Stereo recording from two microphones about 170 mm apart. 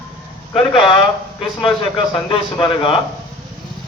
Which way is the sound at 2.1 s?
30° left (ahead or behind).